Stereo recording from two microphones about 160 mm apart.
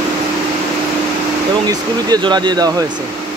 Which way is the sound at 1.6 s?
25° right (ahead or behind).